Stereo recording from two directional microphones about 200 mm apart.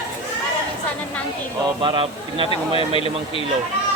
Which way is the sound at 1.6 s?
25° right (ahead or behind).